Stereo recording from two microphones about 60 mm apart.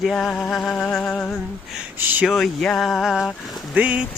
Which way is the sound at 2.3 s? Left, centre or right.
Centre.